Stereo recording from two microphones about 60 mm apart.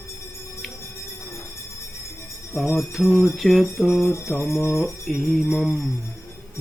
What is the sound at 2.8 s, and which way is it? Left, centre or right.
Music, centre.